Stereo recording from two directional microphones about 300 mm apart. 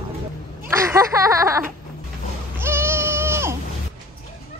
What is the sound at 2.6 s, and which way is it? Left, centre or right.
Baby cry, centre.